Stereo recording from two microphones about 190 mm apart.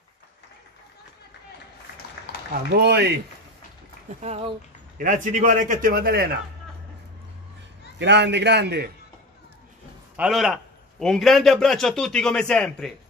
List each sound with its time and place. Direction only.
2.7 s a man's voice: 60° right (ahead or behind)
4.1 s a man's voice: 35° right (ahead or behind); by 6.3 s 50° right (ahead or behind)
8.0 s a man's voice: 65° right (ahead or behind)
10.1 s a man's voice: 5° right (ahead or behind)